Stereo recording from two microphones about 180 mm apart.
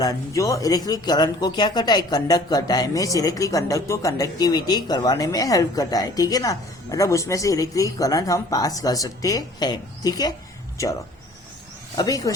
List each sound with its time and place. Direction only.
0.0 s speech: 20° left (ahead or behind)
11.9 s speech: 20° left (ahead or behind)